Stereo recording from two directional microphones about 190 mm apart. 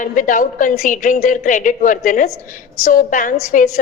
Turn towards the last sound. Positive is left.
turn(degrees=45)  # may be behind; listen again after turning